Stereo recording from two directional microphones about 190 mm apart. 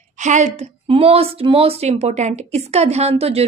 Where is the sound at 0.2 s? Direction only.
40° right (ahead or behind).